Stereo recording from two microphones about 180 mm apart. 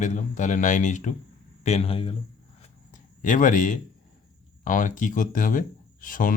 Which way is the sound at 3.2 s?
45° left (ahead or behind).